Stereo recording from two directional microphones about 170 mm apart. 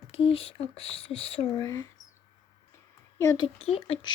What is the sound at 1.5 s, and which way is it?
Speech, 20° left (ahead or behind).